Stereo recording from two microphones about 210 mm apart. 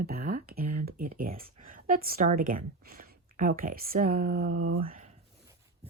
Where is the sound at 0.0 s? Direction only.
45° right (ahead or behind).